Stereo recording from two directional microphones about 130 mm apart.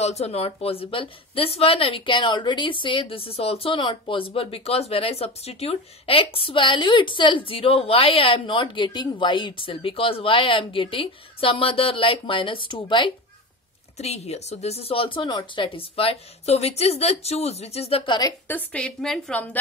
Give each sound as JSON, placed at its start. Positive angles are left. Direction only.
{"t": 0.0, "sound": "a woman's voice", "side_deg": 55}
{"t": 13.9, "sound": "a woman's voice", "side_deg": 55}
{"t": 18.5, "sound": "a woman's voice", "side_deg": 10}